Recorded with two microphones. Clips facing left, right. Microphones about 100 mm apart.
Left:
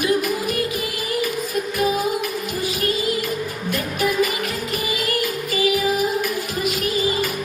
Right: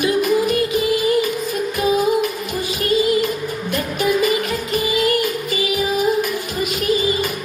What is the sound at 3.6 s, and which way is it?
Music, 25° right (ahead or behind).